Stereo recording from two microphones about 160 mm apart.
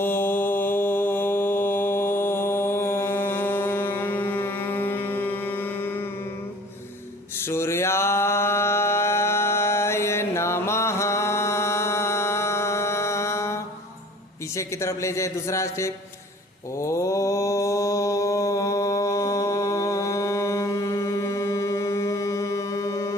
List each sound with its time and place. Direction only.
0.0 s mantra: 15° left (ahead or behind)
7.4 s mantra: 15° left (ahead or behind)
14.5 s speech: 15° left (ahead or behind)
16.8 s mantra: 20° left (ahead or behind)